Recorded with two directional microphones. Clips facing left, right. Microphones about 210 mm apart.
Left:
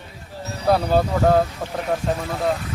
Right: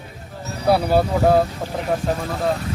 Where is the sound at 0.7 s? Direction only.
10° right (ahead or behind).